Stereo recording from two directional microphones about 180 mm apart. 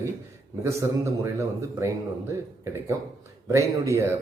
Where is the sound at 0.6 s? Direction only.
15° right (ahead or behind).